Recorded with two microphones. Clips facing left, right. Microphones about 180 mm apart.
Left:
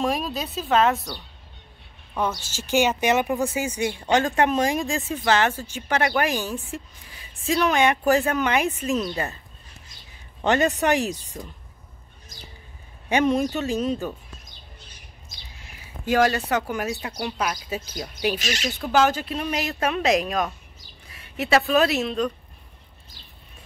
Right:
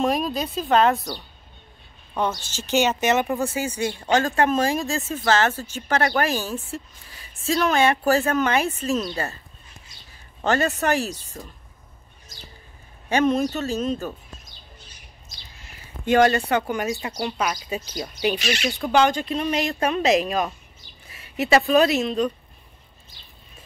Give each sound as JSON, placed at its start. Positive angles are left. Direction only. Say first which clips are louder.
{"t": 0.0, "sound": "speech", "louder": "right 3 dB", "side_deg": 0}
{"t": 2.1, "sound": "a woman's voice", "louder": "right 1 dB", "side_deg": 5}
{"t": 10.4, "sound": "a woman's voice", "louder": "left 1 dB", "side_deg": 15}
{"t": 13.1, "sound": "a woman's voice", "louder": "right 1 dB", "side_deg": 15}
{"t": 15.8, "sound": "speech", "louder": "right 3 dB", "side_deg": 5}